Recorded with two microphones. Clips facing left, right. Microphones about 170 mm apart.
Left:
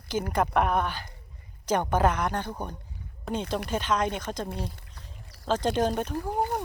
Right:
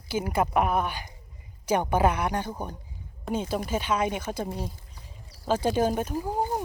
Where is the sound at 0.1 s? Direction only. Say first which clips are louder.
Right 1 dB; 10° right (ahead or behind).